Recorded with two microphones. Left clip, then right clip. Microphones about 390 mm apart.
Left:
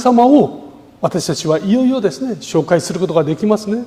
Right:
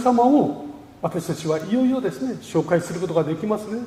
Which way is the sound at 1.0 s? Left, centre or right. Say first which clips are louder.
Left 8 dB; left.